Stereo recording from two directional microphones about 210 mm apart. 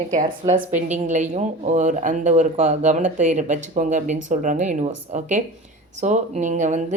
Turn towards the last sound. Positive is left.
turn(degrees=-35)  # may be behind; listen again after turning